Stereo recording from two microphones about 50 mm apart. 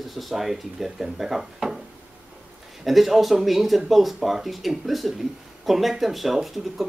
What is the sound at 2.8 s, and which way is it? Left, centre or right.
Speech, centre.